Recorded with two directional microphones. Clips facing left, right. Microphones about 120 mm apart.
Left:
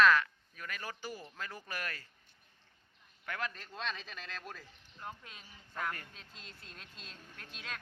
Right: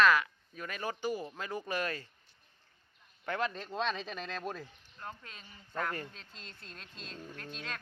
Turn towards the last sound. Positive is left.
turn(degrees=5)  # may be behind; listen again after turning